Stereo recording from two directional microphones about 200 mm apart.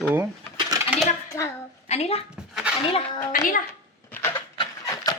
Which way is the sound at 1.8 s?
30° left (ahead or behind).